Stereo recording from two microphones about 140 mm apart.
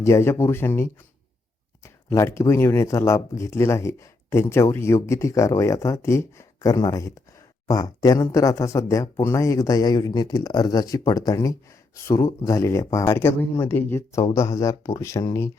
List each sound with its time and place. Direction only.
0.0 s speech: 20° left (ahead or behind)